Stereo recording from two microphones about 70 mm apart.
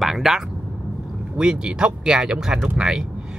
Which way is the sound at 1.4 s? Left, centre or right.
Centre.